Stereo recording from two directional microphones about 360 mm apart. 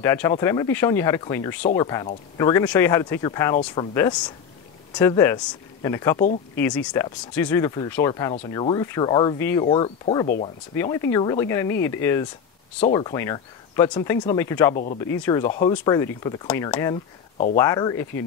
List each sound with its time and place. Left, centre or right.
0.0 s speech: centre
1.6 s speech: left
1.9 s speech: centre
10.2 s speech: left
10.7 s speech: centre
14.8 s speech: left
15.2 s speech: centre